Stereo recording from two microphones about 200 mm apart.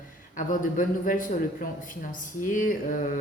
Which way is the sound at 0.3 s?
40° left (ahead or behind).